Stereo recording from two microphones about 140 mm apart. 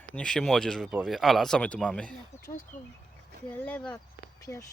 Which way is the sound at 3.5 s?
10° left (ahead or behind).